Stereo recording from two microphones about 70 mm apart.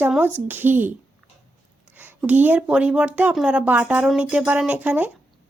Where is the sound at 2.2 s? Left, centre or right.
Right.